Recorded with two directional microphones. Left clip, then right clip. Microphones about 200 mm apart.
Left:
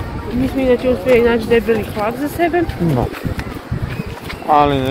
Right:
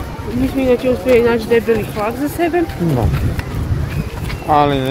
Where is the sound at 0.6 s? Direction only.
30° right (ahead or behind).